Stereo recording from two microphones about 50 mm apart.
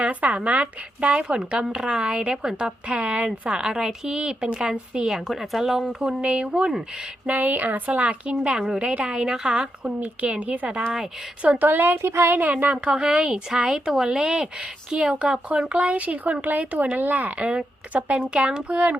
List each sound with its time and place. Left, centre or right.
0.0 s a woman's voice: right
3.6 s a woman's voice: centre
7.3 s speech: right
11.6 s a woman's voice: right
12.0 s speech: right
12.4 s speech: right
12.7 s a woman's voice: centre
15.7 s speech: right